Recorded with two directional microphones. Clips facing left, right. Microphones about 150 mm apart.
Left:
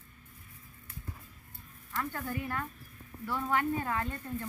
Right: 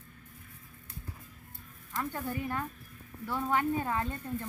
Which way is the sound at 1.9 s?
20° right (ahead or behind).